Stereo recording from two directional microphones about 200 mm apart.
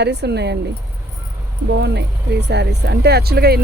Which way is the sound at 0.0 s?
55° right (ahead or behind).